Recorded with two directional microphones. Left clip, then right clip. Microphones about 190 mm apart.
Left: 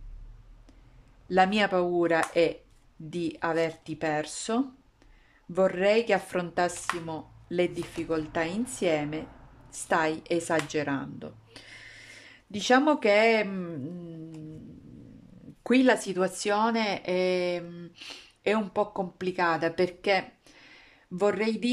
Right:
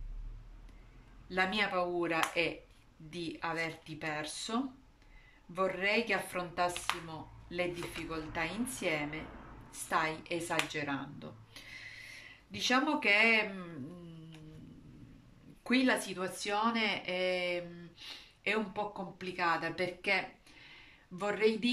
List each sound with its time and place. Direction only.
1.3 s speech: 55° left (ahead or behind)
15.6 s speech: 50° left (ahead or behind)